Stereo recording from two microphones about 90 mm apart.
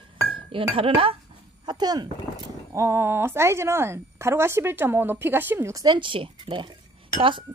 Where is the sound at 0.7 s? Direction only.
85° right.